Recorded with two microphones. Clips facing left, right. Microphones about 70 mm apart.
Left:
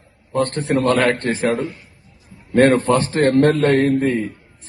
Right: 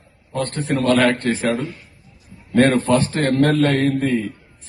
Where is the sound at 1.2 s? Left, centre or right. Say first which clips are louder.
Left 1 dB; centre.